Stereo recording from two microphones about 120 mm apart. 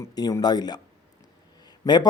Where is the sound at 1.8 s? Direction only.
30° left (ahead or behind).